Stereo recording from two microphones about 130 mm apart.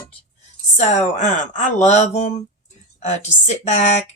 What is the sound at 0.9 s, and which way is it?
A woman's voice, 65° left (ahead or behind).